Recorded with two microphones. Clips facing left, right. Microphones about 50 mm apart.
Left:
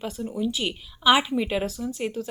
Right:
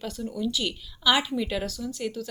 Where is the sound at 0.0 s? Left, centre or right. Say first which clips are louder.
Left 2 dB; left.